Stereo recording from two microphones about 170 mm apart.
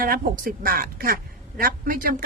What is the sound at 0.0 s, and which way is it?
Speech, 60° right (ahead or behind).